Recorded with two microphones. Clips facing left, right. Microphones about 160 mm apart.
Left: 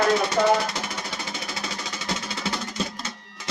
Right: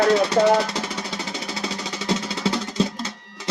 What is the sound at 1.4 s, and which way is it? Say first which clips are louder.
Music: right 4 dB; 35° right (ahead or behind).